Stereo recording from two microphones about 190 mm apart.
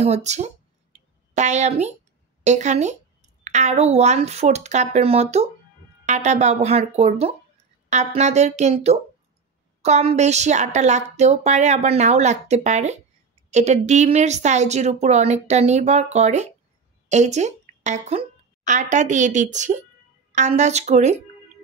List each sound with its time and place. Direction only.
0.0 s speech: 35° right (ahead or behind)
0.9 s a sound: 40° right (ahead or behind)
2.4 s a woman's voice: 35° right (ahead or behind)